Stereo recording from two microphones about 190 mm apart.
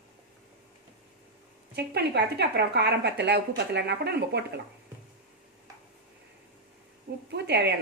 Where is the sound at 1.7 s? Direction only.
60° right (ahead or behind).